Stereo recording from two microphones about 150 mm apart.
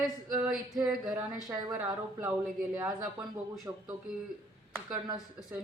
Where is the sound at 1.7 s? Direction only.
10° right (ahead or behind).